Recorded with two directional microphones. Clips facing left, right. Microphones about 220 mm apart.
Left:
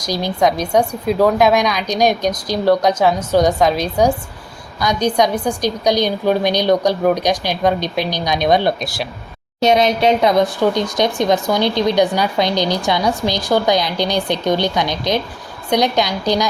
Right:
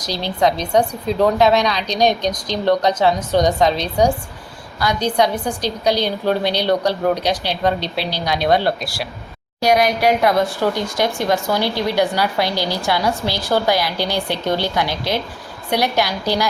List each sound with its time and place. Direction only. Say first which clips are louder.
0.0 s a woman's voice: left 2 dB; 10° left (ahead or behind)